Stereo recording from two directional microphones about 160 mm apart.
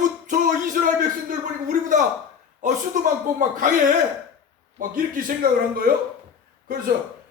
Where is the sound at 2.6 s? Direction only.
50° right (ahead or behind).